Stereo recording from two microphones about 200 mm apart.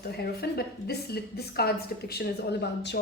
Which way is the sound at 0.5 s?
50° left (ahead or behind).